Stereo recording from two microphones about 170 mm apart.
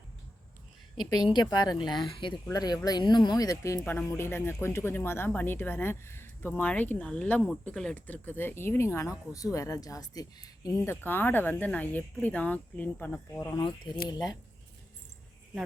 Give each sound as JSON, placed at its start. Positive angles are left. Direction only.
{"t": 1.3, "sound": "speech", "side_deg": 25}
{"t": 13.6, "sound": "speech", "side_deg": 30}